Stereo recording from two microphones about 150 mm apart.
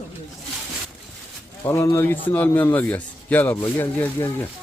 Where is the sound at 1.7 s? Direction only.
15° left (ahead or behind).